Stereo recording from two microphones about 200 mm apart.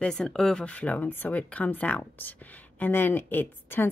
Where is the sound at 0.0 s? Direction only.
5° left (ahead or behind).